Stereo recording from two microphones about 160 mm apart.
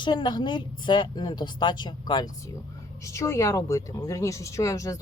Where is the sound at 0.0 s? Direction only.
30° left (ahead or behind).